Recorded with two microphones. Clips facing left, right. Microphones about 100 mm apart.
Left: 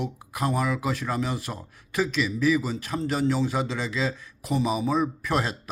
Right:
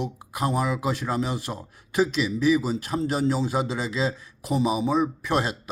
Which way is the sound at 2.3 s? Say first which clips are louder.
Right 2 dB; 25° right (ahead or behind).